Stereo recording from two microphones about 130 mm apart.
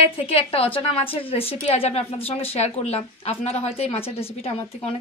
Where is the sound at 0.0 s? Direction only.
45° left (ahead or behind).